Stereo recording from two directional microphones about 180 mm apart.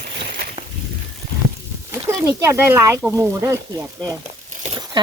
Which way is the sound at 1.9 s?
15° right (ahead or behind).